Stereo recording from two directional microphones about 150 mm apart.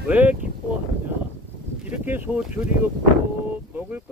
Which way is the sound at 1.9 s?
10° right (ahead or behind).